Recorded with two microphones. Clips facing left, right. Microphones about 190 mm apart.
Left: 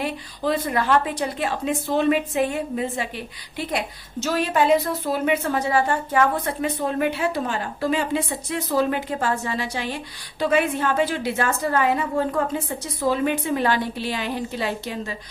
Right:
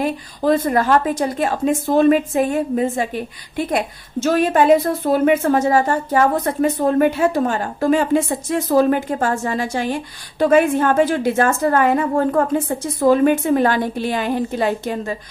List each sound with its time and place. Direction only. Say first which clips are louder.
0.0 s a woman's voice: right 6 dB; 45° right (ahead or behind)